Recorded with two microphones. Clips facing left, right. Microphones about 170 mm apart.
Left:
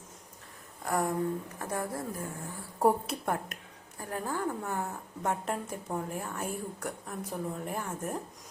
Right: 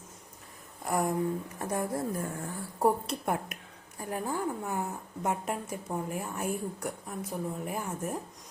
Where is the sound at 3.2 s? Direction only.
15° right (ahead or behind).